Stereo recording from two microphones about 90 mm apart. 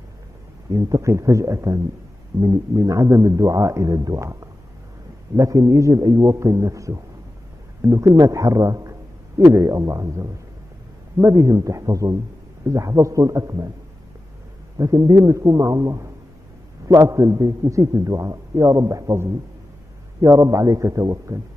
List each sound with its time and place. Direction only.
0.7 s a man's voice: 35° right (ahead or behind)
14.8 s a man's voice: 35° right (ahead or behind)